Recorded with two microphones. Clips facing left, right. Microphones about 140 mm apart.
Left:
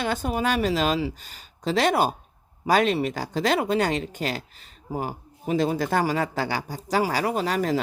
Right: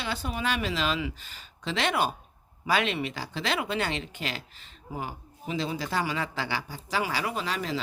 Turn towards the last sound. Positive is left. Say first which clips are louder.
# left 7 dB
turn(degrees=45)  # may be behind; listen again after turning